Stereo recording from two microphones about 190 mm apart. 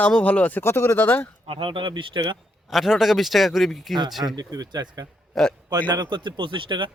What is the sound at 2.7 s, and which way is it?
Speech, centre (ahead or behind).